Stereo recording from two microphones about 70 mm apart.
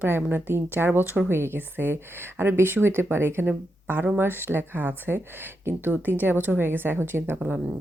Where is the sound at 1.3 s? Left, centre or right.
Right.